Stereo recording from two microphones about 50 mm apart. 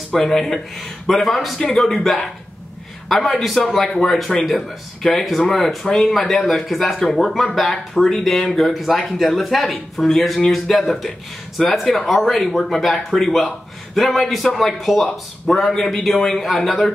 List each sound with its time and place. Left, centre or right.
0.1 s speech: centre